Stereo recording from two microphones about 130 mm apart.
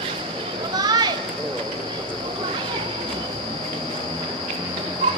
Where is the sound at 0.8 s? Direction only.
30° right (ahead or behind).